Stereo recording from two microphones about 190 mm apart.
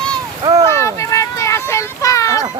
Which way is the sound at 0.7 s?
15° left (ahead or behind).